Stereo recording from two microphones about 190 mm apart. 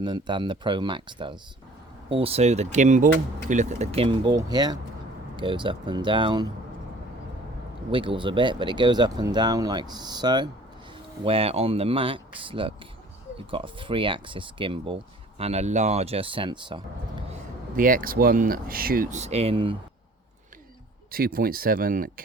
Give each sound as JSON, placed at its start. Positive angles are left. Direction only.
{"t": 0.0, "sound": "speech", "side_deg": -25}
{"t": 7.9, "sound": "speech", "side_deg": -25}
{"t": 17.7, "sound": "speech", "side_deg": -45}
{"t": 19.2, "sound": "speech", "side_deg": -35}
{"t": 21.1, "sound": "speech", "side_deg": -50}